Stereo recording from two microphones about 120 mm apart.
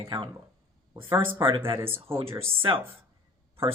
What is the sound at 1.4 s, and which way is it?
Speech, 45° right (ahead or behind).